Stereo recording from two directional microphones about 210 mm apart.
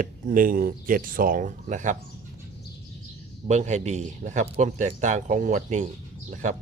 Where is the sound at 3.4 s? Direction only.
35° right (ahead or behind).